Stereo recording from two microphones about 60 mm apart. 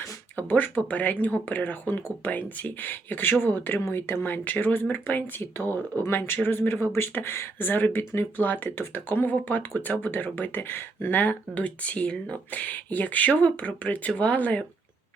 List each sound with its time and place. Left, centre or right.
0.3 s speech: left